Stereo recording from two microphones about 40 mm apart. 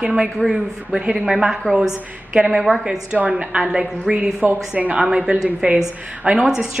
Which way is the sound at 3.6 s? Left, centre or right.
Centre.